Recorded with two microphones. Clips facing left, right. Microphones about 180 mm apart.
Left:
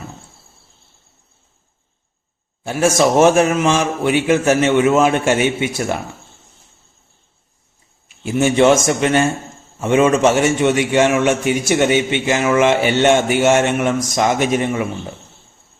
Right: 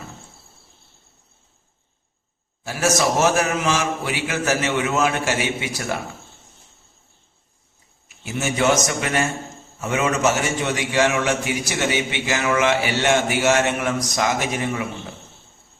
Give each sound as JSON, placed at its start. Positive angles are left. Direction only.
{"t": 2.6, "sound": "a man's voice", "side_deg": 25}
{"t": 8.0, "sound": "a man's voice", "side_deg": 30}